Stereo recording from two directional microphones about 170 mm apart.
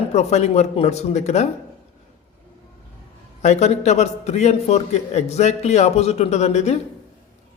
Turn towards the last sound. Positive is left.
turn(degrees=40)  # may be behind; listen again after turning